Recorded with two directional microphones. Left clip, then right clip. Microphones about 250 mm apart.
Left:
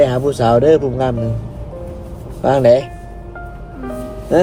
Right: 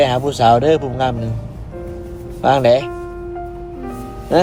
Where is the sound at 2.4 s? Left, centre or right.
Right.